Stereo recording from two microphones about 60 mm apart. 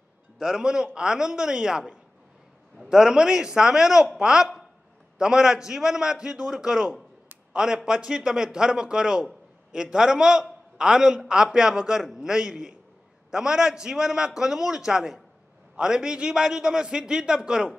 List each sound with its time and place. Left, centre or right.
0.4 s a man's voice: centre